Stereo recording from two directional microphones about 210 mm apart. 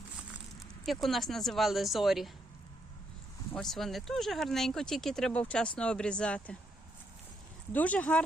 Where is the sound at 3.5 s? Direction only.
Centre (ahead or behind).